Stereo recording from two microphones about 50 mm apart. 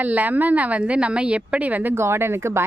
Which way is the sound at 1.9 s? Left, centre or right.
Right.